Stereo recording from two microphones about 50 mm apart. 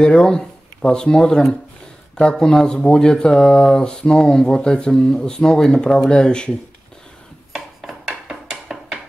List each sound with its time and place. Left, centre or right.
0.0 s speech: left
7.5 s a sound: centre
8.3 s music: centre